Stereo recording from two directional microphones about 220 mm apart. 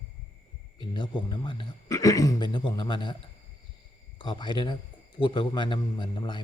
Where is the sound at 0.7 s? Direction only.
20° left (ahead or behind).